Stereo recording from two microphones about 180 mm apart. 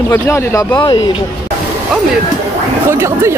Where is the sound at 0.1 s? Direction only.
15° left (ahead or behind).